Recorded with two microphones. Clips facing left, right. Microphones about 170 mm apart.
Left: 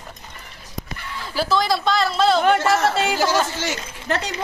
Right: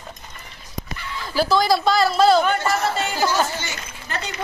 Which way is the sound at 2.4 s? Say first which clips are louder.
Left 4 dB; 80° left.